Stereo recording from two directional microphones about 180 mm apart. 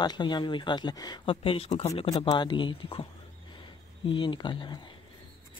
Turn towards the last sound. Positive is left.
turn(degrees=25)  # may be behind; listen again after turning